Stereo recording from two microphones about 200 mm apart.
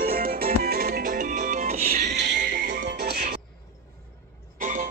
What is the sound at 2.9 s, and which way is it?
Music, 55° right (ahead or behind).